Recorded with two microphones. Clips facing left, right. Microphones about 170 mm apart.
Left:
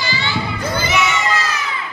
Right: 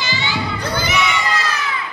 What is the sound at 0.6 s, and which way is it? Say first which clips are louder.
Crowd: left 2 dB; 10° left (ahead or behind).